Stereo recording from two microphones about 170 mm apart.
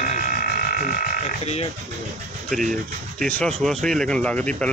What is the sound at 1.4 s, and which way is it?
Speech, 40° left (ahead or behind).